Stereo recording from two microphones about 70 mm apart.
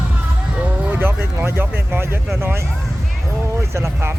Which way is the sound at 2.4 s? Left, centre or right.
Right.